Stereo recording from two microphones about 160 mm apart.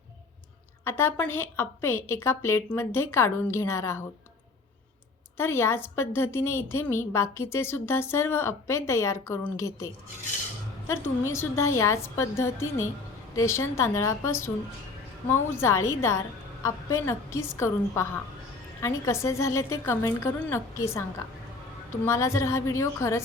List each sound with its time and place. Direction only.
0.9 s a woman's voice: 15° left (ahead or behind)
5.4 s a woman's voice: 15° left (ahead or behind)
22.0 s a woman's voice: 15° left (ahead or behind)